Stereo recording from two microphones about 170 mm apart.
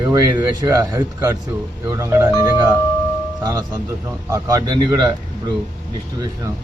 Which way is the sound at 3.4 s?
20° right (ahead or behind).